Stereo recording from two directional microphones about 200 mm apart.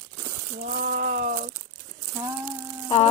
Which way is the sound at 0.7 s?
45° right (ahead or behind).